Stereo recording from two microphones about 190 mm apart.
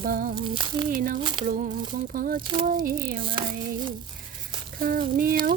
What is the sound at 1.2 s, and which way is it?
Speech, 25° right (ahead or behind).